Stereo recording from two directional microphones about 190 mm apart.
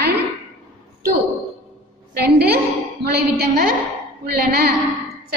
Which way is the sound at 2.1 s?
60° right (ahead or behind).